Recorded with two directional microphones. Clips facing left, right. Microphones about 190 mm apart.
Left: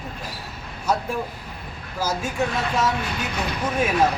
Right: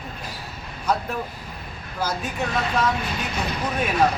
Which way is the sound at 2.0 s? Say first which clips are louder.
Left 1 dB; 10° left (ahead or behind).